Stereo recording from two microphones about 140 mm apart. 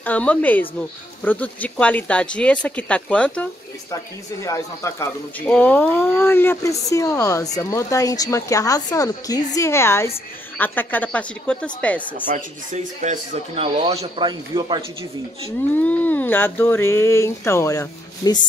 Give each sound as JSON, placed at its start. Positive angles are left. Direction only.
{"t": 0.0, "sound": "speech", "side_deg": 10}
{"t": 3.9, "sound": "a woman's voice", "side_deg": 25}
{"t": 5.5, "sound": "a woman's voice", "side_deg": 10}
{"t": 12.4, "sound": "speech", "side_deg": -60}
{"t": 14.2, "sound": "speech", "side_deg": -30}
{"t": 15.7, "sound": "speech", "side_deg": 10}